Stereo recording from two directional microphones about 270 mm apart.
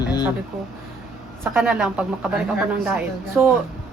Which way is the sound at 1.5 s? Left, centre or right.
Centre.